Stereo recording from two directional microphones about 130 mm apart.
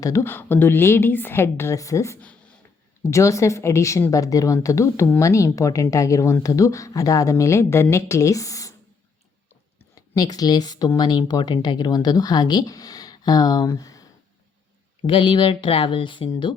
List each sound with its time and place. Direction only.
0.0 s a woman's voice: 20° left (ahead or behind)
9.9 s speech: 30° left (ahead or behind)
15.0 s speech: 40° left (ahead or behind)